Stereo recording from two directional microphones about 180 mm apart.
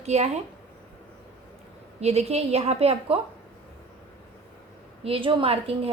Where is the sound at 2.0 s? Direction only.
35° right (ahead or behind).